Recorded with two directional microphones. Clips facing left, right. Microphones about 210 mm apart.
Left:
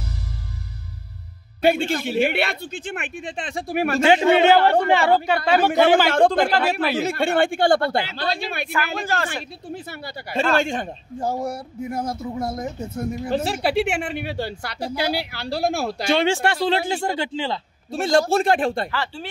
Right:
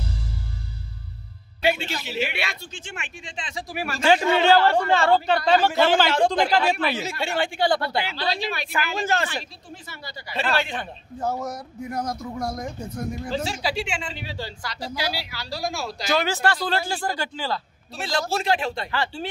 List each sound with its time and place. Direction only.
1.6 s speech: 50° left (ahead or behind)
4.0 s speech: 20° left (ahead or behind)
4.6 s speech: 55° left (ahead or behind)
4.8 s a woman's voice: 15° left (ahead or behind)
6.0 s a woman's voice: 55° left (ahead or behind)
9.0 s speech: 20° right (ahead or behind)
9.8 s a woman's voice: 55° left (ahead or behind)
11.5 s a woman's voice: 5° left (ahead or behind)
12.1 s speech: 25° left (ahead or behind)
12.5 s a woman's voice: 5° left (ahead or behind)
13.3 s speech: 55° left (ahead or behind)
16.1 s speech: 30° left (ahead or behind)
17.9 s a woman's voice: 50° left (ahead or behind)
18.9 s speech: centre (ahead or behind)